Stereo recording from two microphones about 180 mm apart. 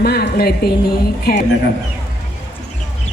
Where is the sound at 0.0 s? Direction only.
60° left (ahead or behind).